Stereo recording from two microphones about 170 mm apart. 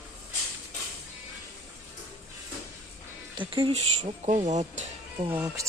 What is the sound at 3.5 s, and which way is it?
Speech, 30° right (ahead or behind).